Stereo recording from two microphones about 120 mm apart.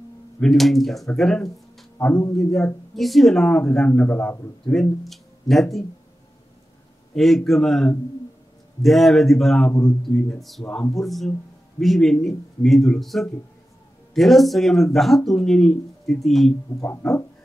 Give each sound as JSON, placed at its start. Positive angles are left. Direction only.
{"t": 0.4, "sound": "speech", "side_deg": 0}
{"t": 4.7, "sound": "speech", "side_deg": 0}
{"t": 7.2, "sound": "speech", "side_deg": 0}
{"t": 9.7, "sound": "music", "side_deg": 25}
{"t": 10.0, "sound": "speech", "side_deg": 0}
{"t": 16.8, "sound": "music", "side_deg": 20}